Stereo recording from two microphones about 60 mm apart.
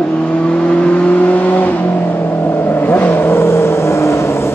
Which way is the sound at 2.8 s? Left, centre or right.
Left.